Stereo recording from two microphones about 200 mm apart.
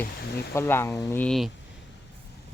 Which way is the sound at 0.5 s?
10° left (ahead or behind).